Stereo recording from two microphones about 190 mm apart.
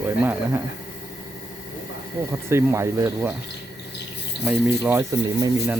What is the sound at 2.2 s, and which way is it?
Speech, 15° right (ahead or behind).